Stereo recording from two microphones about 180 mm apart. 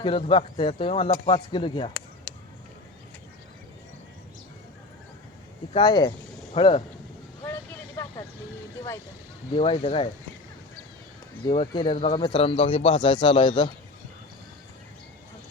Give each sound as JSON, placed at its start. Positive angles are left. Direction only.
{"t": 0.0, "sound": "a man's voice", "side_deg": 30}
{"t": 5.7, "sound": "speech", "side_deg": 25}
{"t": 7.4, "sound": "vehicle", "side_deg": 15}
{"t": 9.6, "sound": "speech", "side_deg": 30}
{"t": 11.4, "sound": "a man's voice", "side_deg": 30}